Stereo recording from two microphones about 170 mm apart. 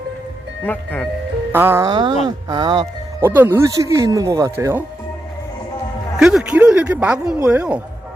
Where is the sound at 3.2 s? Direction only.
10° right (ahead or behind).